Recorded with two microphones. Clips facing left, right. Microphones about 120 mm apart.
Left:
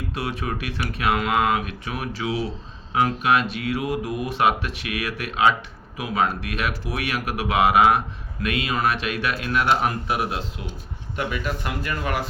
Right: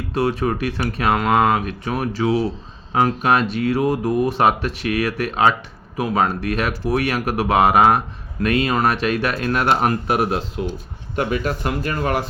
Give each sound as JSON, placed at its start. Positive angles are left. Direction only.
{"t": 0.1, "sound": "speech", "side_deg": -35}